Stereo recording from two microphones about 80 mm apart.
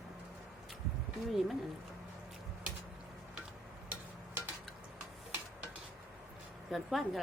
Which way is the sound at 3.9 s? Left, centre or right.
Right.